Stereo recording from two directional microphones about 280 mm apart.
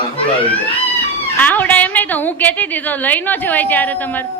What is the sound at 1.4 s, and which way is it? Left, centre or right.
A woman's voice, centre.